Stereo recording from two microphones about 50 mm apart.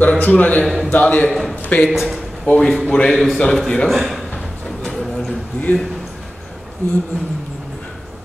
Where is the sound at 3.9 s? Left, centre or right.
Centre.